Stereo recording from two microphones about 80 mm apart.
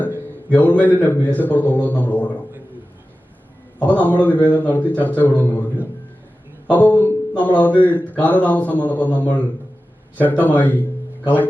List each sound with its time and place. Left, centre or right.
0.5 s a man's voice: left
3.8 s a man's voice: centre